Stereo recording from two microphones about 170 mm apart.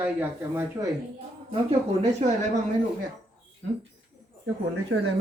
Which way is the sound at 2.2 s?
40° right (ahead or behind).